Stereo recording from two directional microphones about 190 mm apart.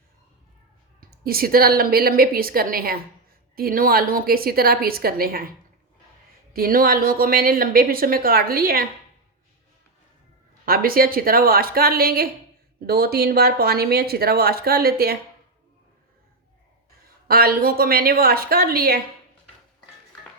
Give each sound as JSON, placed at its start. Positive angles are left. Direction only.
{"t": 1.1, "sound": "speech", "side_deg": -50}
{"t": 10.7, "sound": "speech", "side_deg": -50}
{"t": 17.2, "sound": "speech", "side_deg": -55}